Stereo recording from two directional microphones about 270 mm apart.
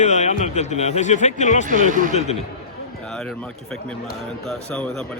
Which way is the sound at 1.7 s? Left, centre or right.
Right.